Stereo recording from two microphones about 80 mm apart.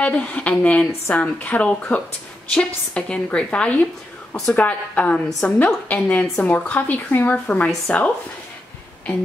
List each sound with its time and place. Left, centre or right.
0.0 s a woman's voice: centre